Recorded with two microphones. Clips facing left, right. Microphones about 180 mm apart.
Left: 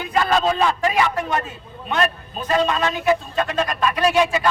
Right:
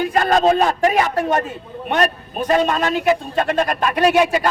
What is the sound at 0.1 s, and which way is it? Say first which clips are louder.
Speech: right 1 dB; 45° right (ahead or behind).